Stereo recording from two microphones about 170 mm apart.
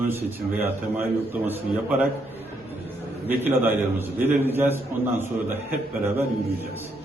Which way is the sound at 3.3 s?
10° right (ahead or behind).